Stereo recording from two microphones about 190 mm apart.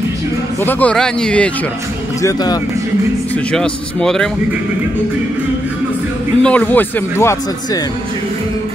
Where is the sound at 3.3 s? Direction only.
5° left (ahead or behind).